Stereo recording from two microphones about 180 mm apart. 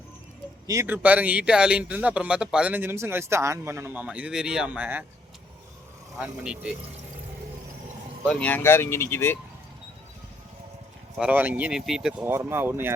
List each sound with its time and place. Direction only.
0.7 s a man's voice: 15° right (ahead or behind)
6.1 s a man's voice: 5° right (ahead or behind)
8.3 s speech: 5° left (ahead or behind)
11.2 s a man's voice: 10° right (ahead or behind)